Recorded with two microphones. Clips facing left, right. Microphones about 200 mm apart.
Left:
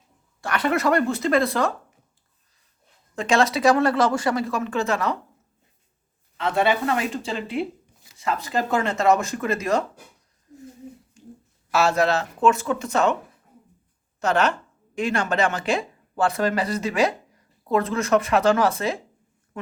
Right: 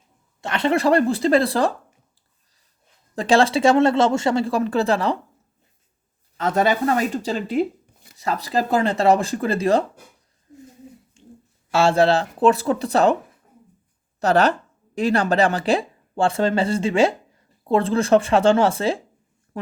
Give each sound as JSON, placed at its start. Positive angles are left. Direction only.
{"t": 0.4, "sound": "speech", "side_deg": -25}
{"t": 3.2, "sound": "speech", "side_deg": -30}
{"t": 6.3, "sound": "speech", "side_deg": -40}
{"t": 11.2, "sound": "a sound", "side_deg": -25}
{"t": 11.7, "sound": "speech", "side_deg": -30}
{"t": 14.2, "sound": "speech", "side_deg": -35}